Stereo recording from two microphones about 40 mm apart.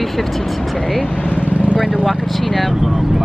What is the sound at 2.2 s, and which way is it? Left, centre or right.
Speech, centre.